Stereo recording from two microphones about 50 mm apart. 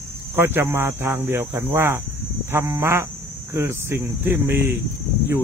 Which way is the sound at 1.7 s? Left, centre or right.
Right.